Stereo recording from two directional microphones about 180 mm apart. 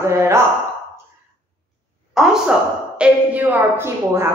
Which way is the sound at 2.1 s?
5° right (ahead or behind).